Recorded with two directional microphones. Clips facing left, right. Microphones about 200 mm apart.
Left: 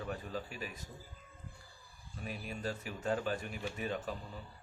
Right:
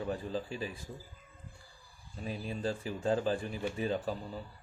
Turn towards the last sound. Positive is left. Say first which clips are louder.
# right 5 dB
turn(degrees=-30)  # may be behind; listen again after turning